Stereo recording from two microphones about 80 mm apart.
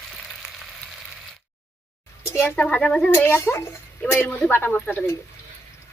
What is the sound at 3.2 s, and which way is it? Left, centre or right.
Speech, left.